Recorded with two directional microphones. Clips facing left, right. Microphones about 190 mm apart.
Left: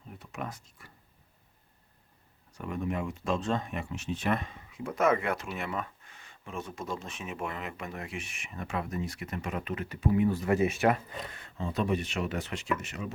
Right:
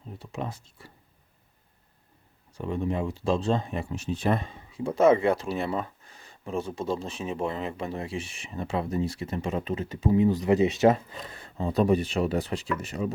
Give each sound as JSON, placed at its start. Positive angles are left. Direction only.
{"t": 0.2, "sound": "speech", "side_deg": -30}
{"t": 2.5, "sound": "speech", "side_deg": -30}